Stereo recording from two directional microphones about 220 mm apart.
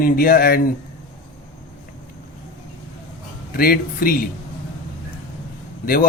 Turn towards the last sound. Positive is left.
turn(degrees=40)  # may be behind; listen again after turning